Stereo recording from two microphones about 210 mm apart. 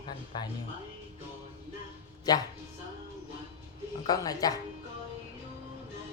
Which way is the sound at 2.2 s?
20° left (ahead or behind).